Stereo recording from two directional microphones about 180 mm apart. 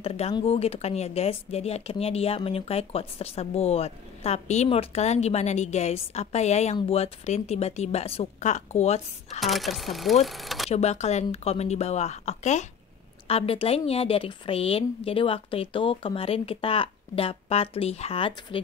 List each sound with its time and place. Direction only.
0.0 s speech: 30° left (ahead or behind)
9.4 s speech: centre (ahead or behind)
10.7 s speech: 35° left (ahead or behind)